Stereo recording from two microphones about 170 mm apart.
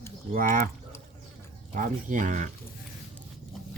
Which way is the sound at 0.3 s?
55° right (ahead or behind).